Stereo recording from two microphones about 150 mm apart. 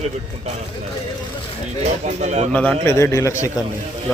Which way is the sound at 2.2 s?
45° right (ahead or behind).